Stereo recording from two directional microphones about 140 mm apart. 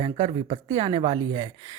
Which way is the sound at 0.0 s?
40° right (ahead or behind).